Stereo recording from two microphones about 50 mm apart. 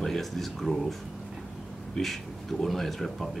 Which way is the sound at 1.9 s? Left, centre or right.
Centre.